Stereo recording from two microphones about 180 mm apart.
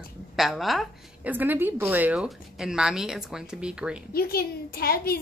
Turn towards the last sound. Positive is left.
turn(degrees=55)  # may be behind; listen again after turning